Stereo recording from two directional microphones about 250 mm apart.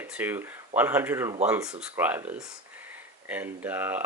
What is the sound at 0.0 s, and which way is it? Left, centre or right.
Speech, centre.